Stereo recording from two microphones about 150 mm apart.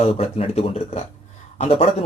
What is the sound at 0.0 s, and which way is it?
Speech, 40° left (ahead or behind).